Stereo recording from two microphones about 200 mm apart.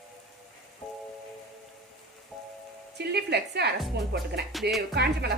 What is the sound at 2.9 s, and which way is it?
Speech, 55° right (ahead or behind).